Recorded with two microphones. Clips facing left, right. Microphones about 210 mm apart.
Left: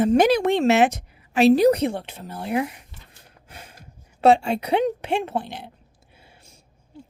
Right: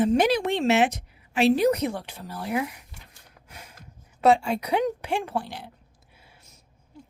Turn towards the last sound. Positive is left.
turn(degrees=30)  # may be behind; listen again after turning